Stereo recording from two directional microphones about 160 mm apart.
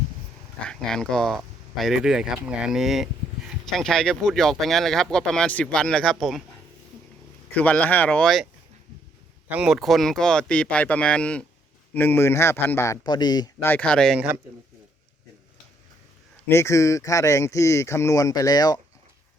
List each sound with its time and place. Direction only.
0.7 s speech: 5° left (ahead or behind)
7.5 s a man's voice: 10° left (ahead or behind)
9.5 s a man's voice: 5° right (ahead or behind); by 13.7 s 25° left (ahead or behind)
13.7 s a man's voice: 10° left (ahead or behind)
16.5 s speech: 15° left (ahead or behind)